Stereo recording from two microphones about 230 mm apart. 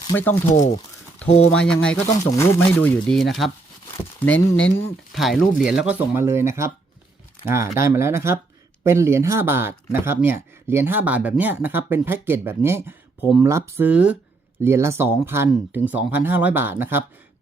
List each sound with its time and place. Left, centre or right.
0.1 s speech: centre
0.5 s speech: left
1.2 s speech: centre